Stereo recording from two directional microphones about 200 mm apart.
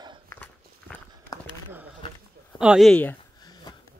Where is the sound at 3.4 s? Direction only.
20° left (ahead or behind).